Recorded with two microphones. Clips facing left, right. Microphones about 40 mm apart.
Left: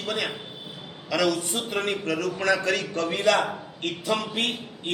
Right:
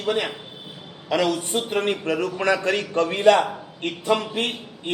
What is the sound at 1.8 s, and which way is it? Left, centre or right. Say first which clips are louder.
A man's voice: right 2 dB; right.